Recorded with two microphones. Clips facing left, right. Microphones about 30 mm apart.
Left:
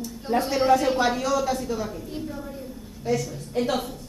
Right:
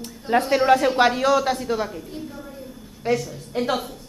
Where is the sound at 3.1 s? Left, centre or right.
Right.